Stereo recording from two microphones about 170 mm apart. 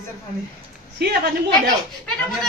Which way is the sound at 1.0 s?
70° right (ahead or behind).